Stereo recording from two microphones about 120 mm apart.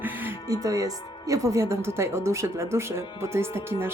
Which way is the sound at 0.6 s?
30° right (ahead or behind).